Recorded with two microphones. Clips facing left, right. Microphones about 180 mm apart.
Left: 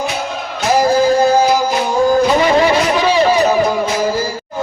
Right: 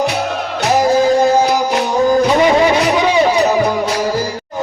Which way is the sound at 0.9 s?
20° right (ahead or behind).